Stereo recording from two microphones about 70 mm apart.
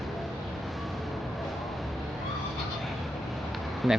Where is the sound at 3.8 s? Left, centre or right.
Centre.